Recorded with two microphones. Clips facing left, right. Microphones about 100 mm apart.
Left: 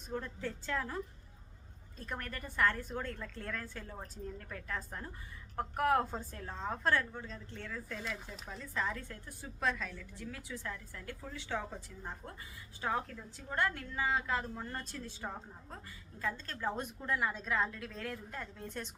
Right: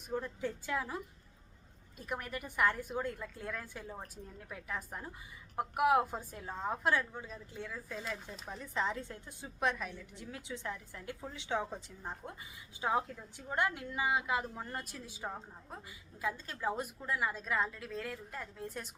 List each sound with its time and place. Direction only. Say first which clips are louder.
0.1 s a woman's voice: right 2 dB; 15° right (ahead or behind)
8.4 s a woman's voice: right 2 dB; 20° right (ahead or behind)